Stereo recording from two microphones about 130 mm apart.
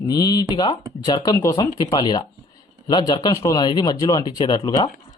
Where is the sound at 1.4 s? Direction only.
25° left (ahead or behind).